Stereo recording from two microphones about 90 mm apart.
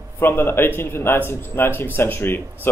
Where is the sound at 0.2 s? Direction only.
25° left (ahead or behind).